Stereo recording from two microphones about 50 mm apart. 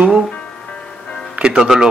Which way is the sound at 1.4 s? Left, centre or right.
Centre.